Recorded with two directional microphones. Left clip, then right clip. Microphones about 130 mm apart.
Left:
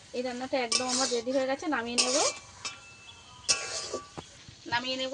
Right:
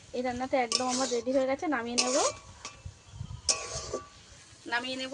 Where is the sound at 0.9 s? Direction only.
25° right (ahead or behind).